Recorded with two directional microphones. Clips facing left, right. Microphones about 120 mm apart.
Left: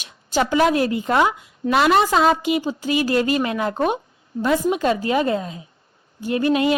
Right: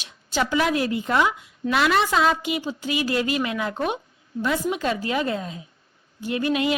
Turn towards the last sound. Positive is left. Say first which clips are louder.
# left 4 dB
turn(degrees=40)  # may be behind; listen again after turning